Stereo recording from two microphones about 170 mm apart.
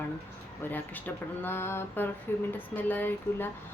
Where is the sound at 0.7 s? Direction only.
10° left (ahead or behind).